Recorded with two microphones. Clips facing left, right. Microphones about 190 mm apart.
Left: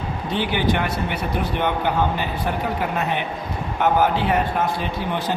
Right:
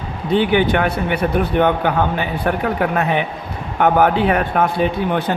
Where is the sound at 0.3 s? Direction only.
60° right (ahead or behind).